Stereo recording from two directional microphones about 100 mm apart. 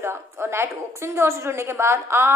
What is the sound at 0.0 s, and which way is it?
A woman's voice, 25° right (ahead or behind).